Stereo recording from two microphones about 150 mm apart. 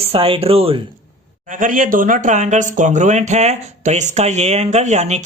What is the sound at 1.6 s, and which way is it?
Speech, 60° right (ahead or behind).